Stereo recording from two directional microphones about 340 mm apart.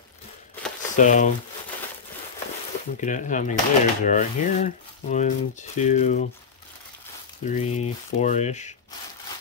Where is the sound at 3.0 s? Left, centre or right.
Left.